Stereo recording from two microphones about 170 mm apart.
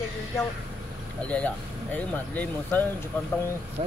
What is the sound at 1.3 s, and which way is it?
Speech, 10° left (ahead or behind).